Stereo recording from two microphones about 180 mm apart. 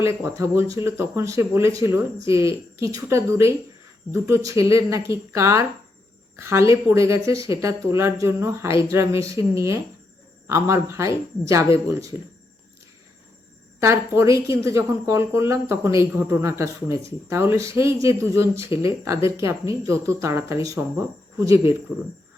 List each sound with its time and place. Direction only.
0.0 s speech: 15° right (ahead or behind)
13.7 s speech: 15° right (ahead or behind)